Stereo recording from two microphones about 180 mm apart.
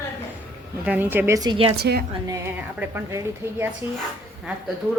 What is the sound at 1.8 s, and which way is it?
Speech, 60° right (ahead or behind).